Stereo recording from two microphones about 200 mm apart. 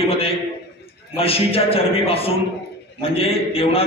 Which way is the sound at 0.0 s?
30° left (ahead or behind).